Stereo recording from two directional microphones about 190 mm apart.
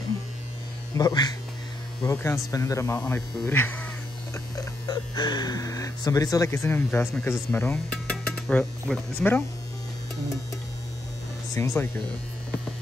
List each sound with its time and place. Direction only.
0.9 s speech: 20° left (ahead or behind)
11.5 s speech: 15° left (ahead or behind)